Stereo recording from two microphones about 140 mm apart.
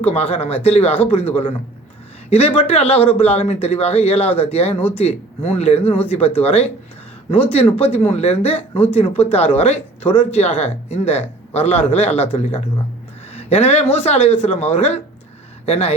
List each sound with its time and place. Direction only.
0.0 s speech: 45° left (ahead or behind)